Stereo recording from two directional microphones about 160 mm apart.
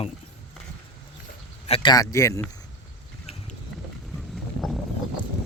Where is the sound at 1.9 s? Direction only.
20° left (ahead or behind).